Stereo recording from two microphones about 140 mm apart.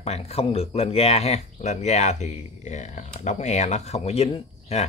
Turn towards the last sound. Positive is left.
turn(degrees=50)  # may be behind; listen again after turning